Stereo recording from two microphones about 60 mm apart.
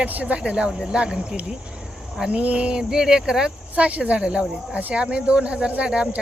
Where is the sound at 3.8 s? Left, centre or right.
Right.